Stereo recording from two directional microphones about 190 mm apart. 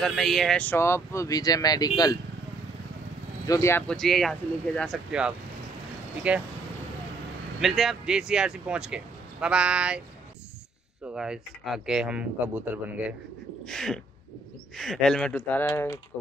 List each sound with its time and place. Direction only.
0.0 s speech: centre (ahead or behind); by 2.1 s 20° left (ahead or behind)
3.4 s speech: 15° left (ahead or behind); by 6.4 s 5° right (ahead or behind)
7.6 s speech: centre (ahead or behind)
11.1 s speech: centre (ahead or behind)